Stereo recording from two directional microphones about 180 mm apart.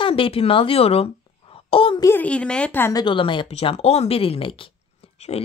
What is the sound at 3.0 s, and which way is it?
Speech, 25° left (ahead or behind).